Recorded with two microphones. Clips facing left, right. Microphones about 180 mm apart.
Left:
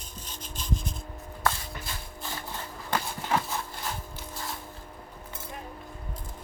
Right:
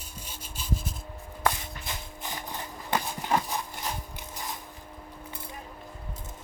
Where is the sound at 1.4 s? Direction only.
20° right (ahead or behind).